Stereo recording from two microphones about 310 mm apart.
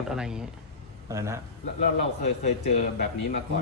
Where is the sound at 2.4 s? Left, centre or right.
Left.